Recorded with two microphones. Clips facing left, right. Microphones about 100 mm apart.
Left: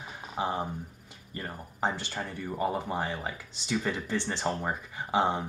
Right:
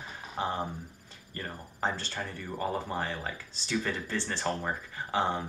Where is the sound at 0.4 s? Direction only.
10° left (ahead or behind).